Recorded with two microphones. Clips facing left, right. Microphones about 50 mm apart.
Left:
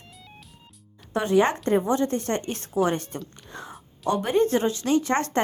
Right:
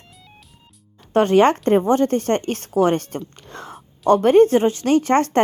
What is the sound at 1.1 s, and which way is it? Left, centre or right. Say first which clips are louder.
A woman's voice: right 7 dB; right.